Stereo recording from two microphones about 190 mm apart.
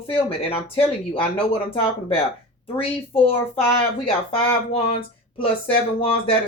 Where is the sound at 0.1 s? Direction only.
30° left (ahead or behind).